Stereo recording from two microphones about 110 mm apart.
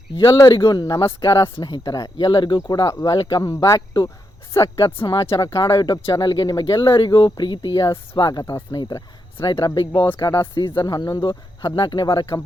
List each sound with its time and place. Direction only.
0.5 s speech: 45° left (ahead or behind)